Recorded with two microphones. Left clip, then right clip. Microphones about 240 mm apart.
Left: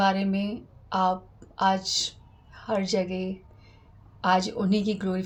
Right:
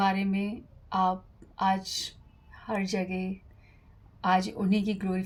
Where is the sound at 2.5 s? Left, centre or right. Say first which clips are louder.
Left 5 dB; right.